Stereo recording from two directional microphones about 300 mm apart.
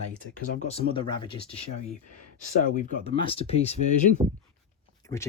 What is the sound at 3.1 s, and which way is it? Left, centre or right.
Speech, centre.